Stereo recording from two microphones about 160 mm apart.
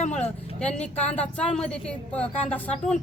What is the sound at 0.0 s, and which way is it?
Vehicle, 45° left (ahead or behind).